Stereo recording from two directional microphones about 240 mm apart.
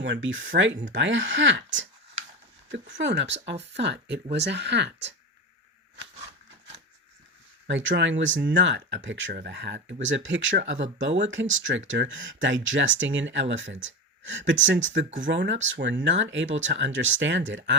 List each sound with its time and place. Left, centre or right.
0.0 s speech: right
3.0 s speech: right
7.7 s speech: right